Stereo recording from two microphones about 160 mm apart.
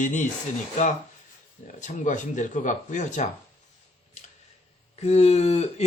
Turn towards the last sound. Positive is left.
turn(degrees=40)  # may be behind; listen again after turning